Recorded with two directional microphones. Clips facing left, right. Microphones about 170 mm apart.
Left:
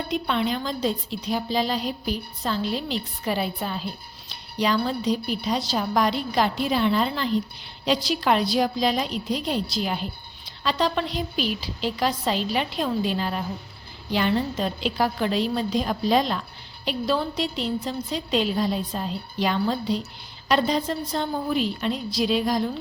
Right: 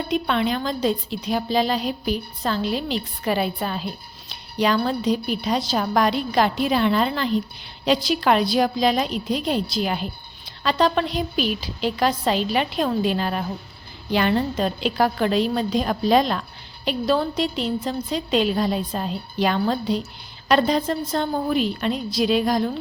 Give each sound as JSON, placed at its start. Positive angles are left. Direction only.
{"t": 0.1, "sound": "a woman's voice", "side_deg": -65}